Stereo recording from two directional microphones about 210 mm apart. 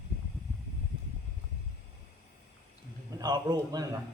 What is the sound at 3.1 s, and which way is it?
Speech, 20° right (ahead or behind).